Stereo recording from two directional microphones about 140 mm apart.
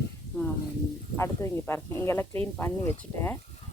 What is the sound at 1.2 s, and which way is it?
Speech, 20° left (ahead or behind).